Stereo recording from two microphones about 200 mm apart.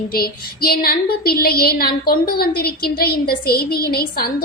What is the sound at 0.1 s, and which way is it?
Speech, 50° left (ahead or behind).